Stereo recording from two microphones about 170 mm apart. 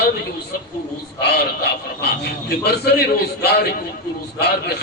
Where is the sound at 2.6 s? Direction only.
70° left (ahead or behind).